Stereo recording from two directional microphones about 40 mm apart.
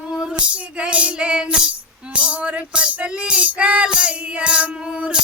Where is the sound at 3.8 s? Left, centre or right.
Right.